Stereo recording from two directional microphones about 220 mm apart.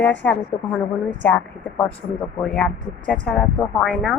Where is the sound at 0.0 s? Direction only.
5° left (ahead or behind).